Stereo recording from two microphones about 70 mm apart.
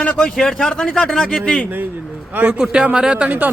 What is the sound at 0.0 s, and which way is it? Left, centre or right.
A man's voice, centre.